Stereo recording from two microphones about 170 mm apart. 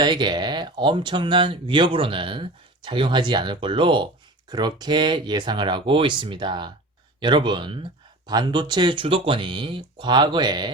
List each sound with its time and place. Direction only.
0.0 s speech: 25° right (ahead or behind)